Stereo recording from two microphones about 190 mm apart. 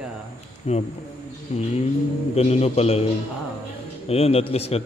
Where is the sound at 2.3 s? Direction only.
35° left (ahead or behind).